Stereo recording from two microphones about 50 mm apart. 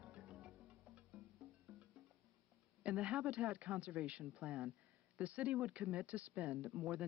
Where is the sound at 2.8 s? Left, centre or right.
Right.